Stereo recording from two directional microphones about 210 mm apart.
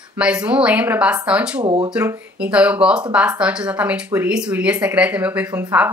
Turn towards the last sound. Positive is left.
turn(degrees=-10)  # may be behind; listen again after turning